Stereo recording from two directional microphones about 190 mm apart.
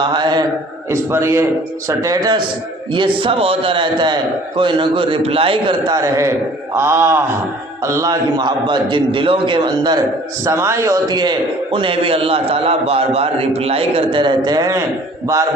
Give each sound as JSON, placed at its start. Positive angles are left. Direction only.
{"t": 0.0, "sound": "a man's voice", "side_deg": -25}